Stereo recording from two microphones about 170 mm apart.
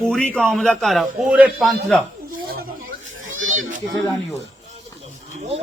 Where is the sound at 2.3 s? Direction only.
60° right (ahead or behind).